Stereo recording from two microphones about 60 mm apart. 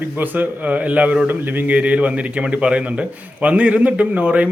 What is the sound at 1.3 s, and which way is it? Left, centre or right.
A man's voice, right.